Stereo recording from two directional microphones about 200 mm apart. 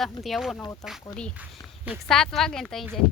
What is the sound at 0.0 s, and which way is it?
Speech, centre (ahead or behind).